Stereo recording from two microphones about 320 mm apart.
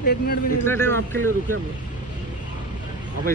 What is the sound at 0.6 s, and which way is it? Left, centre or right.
Speech, centre.